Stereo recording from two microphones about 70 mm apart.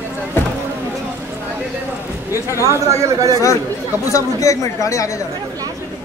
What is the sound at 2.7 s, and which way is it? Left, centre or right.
Speech, right.